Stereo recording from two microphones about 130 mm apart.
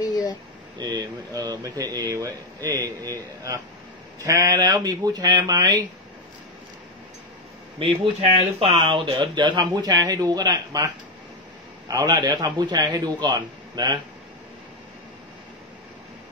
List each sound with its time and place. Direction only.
0.0 s a sound: 25° left (ahead or behind)
0.7 s speech: 30° right (ahead or behind)
4.2 s speech: 25° right (ahead or behind)
7.8 s speech: 45° right (ahead or behind)
11.9 s speech: 30° right (ahead or behind)